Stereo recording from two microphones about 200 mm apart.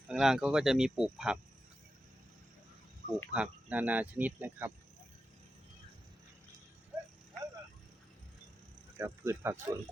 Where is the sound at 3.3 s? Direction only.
5° right (ahead or behind).